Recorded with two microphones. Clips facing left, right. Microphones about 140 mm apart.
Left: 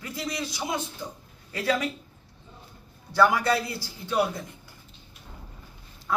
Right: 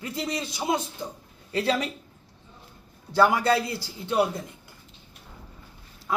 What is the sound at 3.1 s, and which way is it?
Speech, 25° right (ahead or behind).